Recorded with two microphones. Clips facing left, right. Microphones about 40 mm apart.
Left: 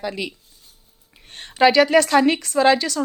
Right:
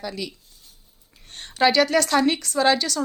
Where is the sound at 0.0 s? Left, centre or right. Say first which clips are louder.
Left 4 dB; left.